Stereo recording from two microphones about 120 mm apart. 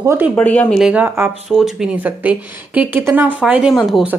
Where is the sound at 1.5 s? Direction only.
5° right (ahead or behind).